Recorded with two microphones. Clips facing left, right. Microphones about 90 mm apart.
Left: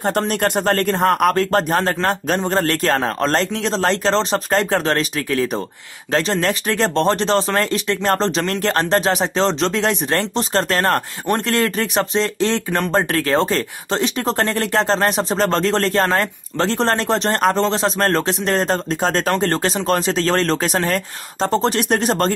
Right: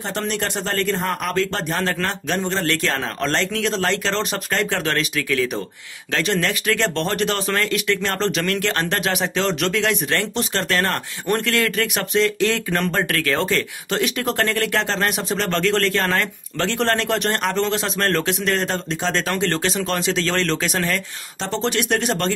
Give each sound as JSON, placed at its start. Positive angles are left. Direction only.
{"t": 0.0, "sound": "speech", "side_deg": 50}